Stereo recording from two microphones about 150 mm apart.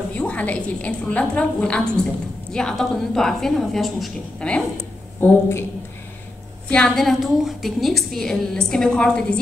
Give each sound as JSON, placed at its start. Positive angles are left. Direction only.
{"t": 0.1, "sound": "a woman's voice", "side_deg": 10}
{"t": 5.2, "sound": "a woman's voice", "side_deg": 15}
{"t": 6.7, "sound": "a woman's voice", "side_deg": 5}